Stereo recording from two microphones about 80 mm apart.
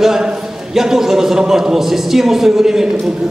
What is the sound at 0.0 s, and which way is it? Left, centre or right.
A man's voice, centre.